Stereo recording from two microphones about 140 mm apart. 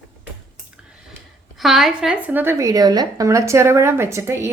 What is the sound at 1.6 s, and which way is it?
A woman's voice, centre (ahead or behind).